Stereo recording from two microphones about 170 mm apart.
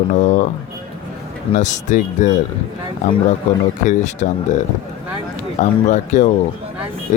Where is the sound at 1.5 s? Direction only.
45° left (ahead or behind).